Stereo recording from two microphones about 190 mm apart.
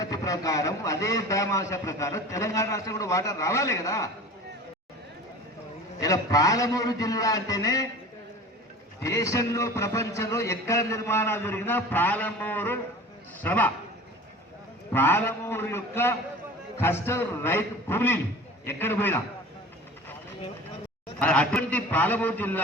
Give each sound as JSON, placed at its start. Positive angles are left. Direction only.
{"t": 0.0, "sound": "a man's voice", "side_deg": 20}
{"t": 6.0, "sound": "a man's voice", "side_deg": 20}
{"t": 9.0, "sound": "a man's voice", "side_deg": 15}
{"t": 14.9, "sound": "a man's voice", "side_deg": 10}
{"t": 21.2, "sound": "a man's voice", "side_deg": 5}